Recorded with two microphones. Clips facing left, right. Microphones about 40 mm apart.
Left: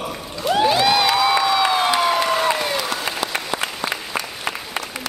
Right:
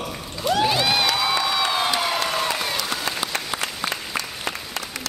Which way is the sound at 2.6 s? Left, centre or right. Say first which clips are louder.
Left 3 dB; centre.